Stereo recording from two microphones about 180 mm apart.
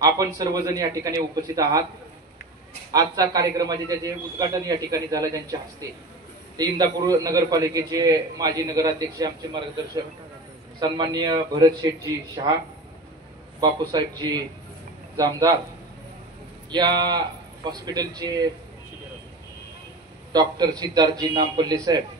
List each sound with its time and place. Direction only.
0.0 s a man's voice: 20° right (ahead or behind)
2.9 s a man's voice: 20° right (ahead or behind)
10.8 s a man's voice: 25° right (ahead or behind)
13.6 s a man's voice: 20° right (ahead or behind)
16.7 s a man's voice: 25° right (ahead or behind)
20.3 s a man's voice: 20° right (ahead or behind)